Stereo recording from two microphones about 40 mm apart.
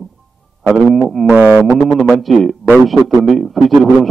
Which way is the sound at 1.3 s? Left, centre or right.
Right.